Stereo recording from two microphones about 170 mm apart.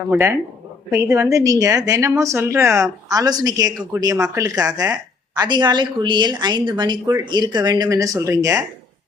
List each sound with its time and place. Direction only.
0.1 s a woman's voice: 15° right (ahead or behind)